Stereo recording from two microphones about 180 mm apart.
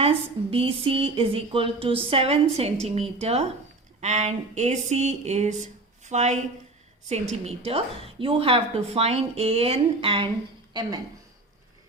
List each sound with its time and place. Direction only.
0.0 s a woman's voice: 30° right (ahead or behind)